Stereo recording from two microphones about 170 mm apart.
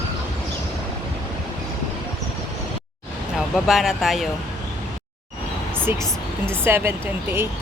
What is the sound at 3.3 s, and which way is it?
Speech, centre (ahead or behind).